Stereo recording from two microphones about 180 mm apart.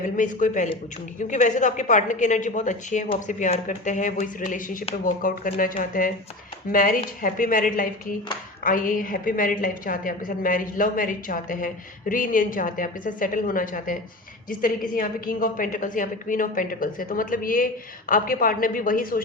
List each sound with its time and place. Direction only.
0.0 s a woman's voice: 45° left (ahead or behind)